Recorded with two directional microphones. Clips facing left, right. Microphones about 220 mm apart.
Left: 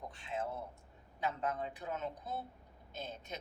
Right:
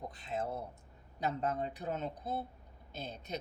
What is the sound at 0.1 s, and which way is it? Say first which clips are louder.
A man's voice: right 1 dB; 40° right (ahead or behind).